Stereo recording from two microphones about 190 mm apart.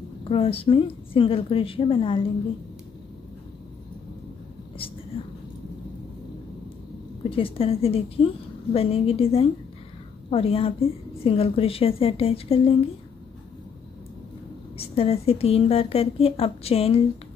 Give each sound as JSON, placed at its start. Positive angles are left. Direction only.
{"t": 0.2, "sound": "a woman's voice", "side_deg": 30}
{"t": 7.2, "sound": "a woman's voice", "side_deg": 30}
{"t": 14.8, "sound": "a woman's voice", "side_deg": 30}